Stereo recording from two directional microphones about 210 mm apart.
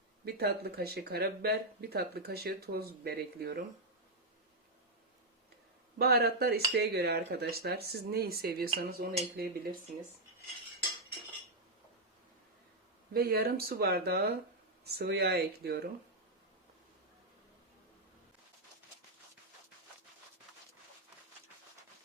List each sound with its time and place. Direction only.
0.3 s speech: 50° right (ahead or behind)
6.0 s speech: 50° right (ahead or behind)
13.1 s speech: 45° right (ahead or behind)